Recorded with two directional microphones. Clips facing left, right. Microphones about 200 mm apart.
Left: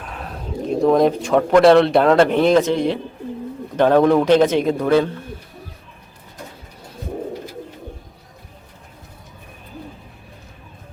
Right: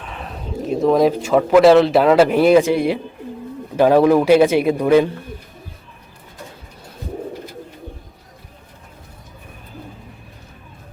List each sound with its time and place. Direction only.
0.0 s speech: centre (ahead or behind)